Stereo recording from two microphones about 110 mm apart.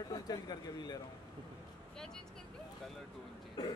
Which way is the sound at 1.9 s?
5° left (ahead or behind).